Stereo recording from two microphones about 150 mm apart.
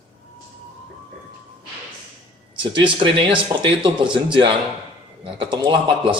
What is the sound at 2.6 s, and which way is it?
Speech, 35° right (ahead or behind).